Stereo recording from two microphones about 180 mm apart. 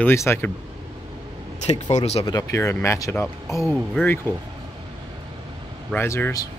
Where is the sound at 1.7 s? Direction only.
40° left (ahead or behind).